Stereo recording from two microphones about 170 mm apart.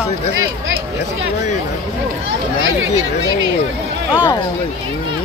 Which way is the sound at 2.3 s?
90° right.